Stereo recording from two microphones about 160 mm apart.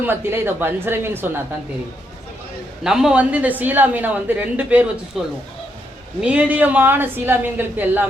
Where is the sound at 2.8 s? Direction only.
5° right (ahead or behind).